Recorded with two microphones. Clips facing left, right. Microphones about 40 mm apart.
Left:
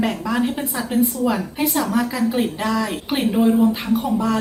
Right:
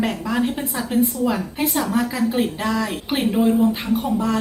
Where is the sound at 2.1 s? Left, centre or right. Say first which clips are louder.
Even; centre.